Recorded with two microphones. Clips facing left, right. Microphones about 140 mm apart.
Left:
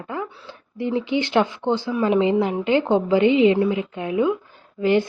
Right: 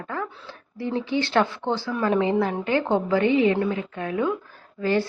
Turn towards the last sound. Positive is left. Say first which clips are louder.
# left 4 dB
turn(degrees=20)  # may be behind; listen again after turning